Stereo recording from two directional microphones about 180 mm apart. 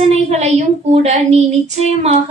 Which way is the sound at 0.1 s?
35° right (ahead or behind).